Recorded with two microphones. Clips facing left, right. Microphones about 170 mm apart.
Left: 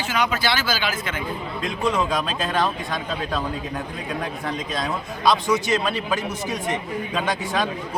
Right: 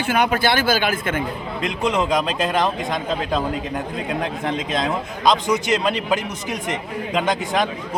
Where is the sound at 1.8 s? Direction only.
20° right (ahead or behind).